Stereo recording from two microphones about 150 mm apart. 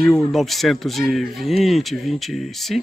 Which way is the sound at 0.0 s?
Centre (ahead or behind).